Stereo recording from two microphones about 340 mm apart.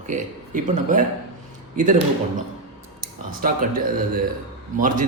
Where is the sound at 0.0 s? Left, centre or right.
Right.